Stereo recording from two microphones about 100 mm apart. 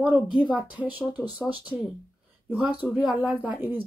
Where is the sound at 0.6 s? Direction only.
15° right (ahead or behind).